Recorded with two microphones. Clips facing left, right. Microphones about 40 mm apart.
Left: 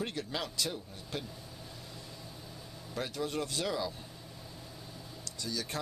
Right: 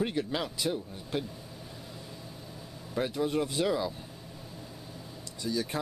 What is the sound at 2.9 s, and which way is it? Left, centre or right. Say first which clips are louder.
Speech: right 6 dB; centre.